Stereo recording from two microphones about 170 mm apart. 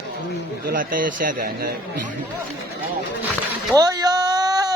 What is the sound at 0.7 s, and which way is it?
A man's voice, 55° right (ahead or behind).